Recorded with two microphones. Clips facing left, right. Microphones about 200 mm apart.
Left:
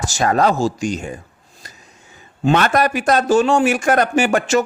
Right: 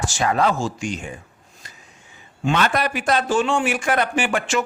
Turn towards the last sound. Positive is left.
turn(degrees=40)  # may be behind; listen again after turning